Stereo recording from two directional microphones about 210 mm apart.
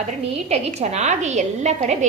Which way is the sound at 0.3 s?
30° right (ahead or behind).